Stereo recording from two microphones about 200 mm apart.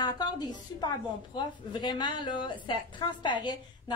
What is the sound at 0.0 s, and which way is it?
A woman's voice, 20° left (ahead or behind).